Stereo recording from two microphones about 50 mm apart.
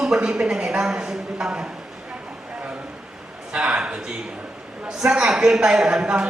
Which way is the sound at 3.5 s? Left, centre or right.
Centre.